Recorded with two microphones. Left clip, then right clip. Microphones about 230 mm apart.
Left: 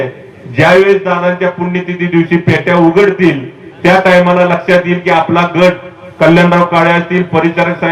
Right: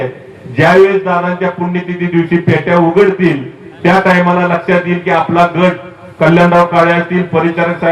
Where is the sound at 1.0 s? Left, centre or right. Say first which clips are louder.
Left 2 dB; left.